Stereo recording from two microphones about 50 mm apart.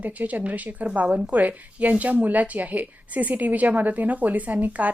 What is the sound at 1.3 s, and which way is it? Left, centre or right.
Speech, right.